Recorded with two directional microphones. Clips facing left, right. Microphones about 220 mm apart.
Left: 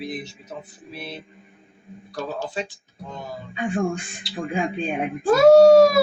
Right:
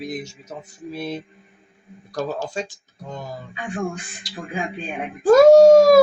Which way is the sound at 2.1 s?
45° right (ahead or behind).